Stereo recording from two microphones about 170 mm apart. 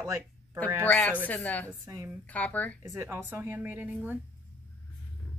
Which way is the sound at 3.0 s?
10° right (ahead or behind).